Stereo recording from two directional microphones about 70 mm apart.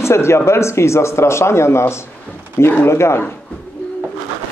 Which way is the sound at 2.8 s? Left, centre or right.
Left.